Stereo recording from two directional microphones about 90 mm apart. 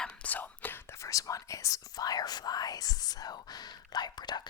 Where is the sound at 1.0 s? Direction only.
40° left (ahead or behind).